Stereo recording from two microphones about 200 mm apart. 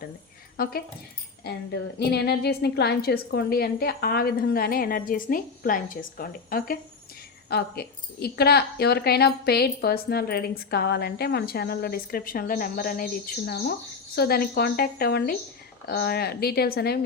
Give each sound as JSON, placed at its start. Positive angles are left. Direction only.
{"t": 0.5, "sound": "a woman's voice", "side_deg": 50}
{"t": 2.0, "sound": "a woman's voice", "side_deg": 55}